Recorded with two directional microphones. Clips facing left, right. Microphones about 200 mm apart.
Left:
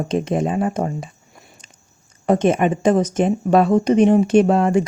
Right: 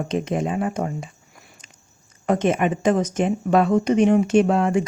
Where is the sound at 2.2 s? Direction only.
30° left (ahead or behind).